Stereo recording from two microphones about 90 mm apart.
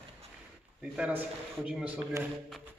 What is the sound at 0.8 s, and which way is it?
A man's voice, 15° right (ahead or behind).